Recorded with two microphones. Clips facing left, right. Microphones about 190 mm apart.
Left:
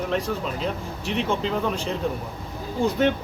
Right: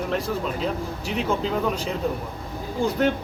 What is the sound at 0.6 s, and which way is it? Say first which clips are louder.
Speech: right 1 dB; centre (ahead or behind).